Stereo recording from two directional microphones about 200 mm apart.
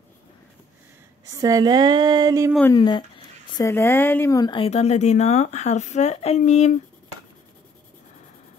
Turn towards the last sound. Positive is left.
turn(degrees=35)  # may be behind; listen again after turning